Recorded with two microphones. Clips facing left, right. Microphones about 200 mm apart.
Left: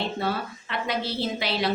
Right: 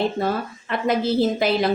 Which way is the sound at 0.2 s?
45° right (ahead or behind).